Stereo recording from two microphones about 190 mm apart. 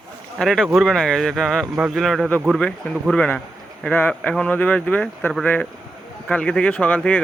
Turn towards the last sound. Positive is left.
turn(degrees=5)  # may be behind; listen again after turning